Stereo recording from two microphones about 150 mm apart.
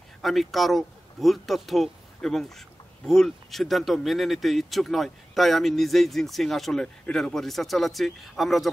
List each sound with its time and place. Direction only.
0.2 s speech: centre (ahead or behind)